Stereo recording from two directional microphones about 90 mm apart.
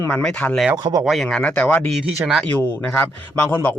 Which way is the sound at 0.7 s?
50° right (ahead or behind).